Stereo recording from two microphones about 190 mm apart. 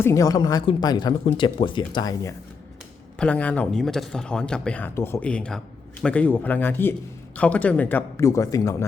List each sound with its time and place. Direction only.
0.0 s speech: 15° left (ahead or behind)
3.2 s speech: 5° left (ahead or behind)